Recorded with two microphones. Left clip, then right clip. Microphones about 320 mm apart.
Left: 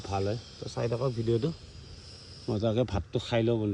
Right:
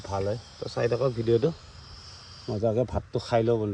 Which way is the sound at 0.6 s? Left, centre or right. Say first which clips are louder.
Right 6 dB; right.